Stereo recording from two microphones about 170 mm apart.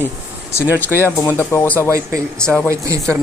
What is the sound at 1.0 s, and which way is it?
Speech, 15° left (ahead or behind).